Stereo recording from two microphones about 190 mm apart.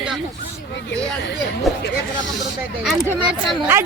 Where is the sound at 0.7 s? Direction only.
70° left (ahead or behind).